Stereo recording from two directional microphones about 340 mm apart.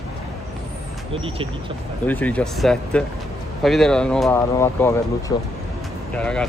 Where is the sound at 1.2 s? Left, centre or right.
Centre.